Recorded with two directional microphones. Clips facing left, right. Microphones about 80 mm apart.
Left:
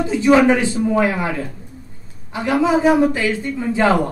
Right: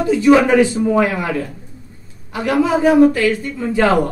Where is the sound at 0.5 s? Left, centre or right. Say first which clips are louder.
Right 3 dB; left.